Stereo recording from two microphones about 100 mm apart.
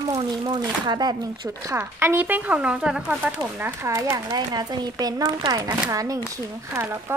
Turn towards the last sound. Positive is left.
turn(degrees=-25)  # may be behind; listen again after turning